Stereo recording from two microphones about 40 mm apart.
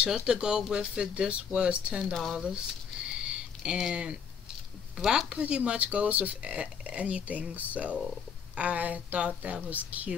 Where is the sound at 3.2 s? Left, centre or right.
Right.